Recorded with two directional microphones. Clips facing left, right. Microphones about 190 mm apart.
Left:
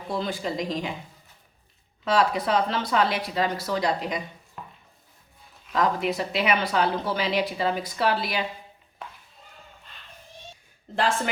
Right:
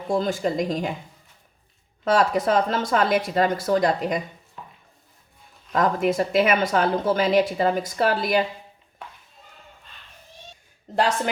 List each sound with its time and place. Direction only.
0.1 s speech: 45° right (ahead or behind)
2.0 s speech: 45° right (ahead or behind)
5.7 s speech: 45° right (ahead or behind)